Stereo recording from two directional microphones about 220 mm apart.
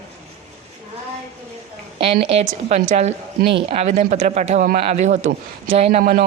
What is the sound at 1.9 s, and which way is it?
A woman's voice, 25° right (ahead or behind).